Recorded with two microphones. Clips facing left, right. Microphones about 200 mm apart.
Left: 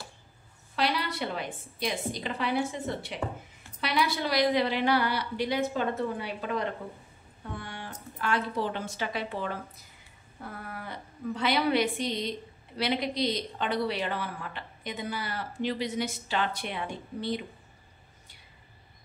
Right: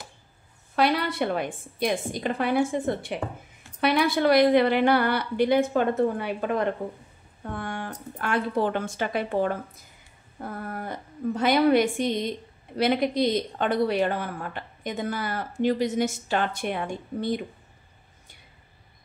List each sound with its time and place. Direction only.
0.7 s a woman's voice: 55° right (ahead or behind)
7.5 s a sound: 50° right (ahead or behind)
8.2 s a woman's voice: 55° right (ahead or behind)